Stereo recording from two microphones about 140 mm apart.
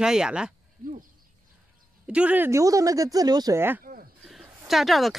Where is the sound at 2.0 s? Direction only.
10° right (ahead or behind); by 3.6 s 30° right (ahead or behind).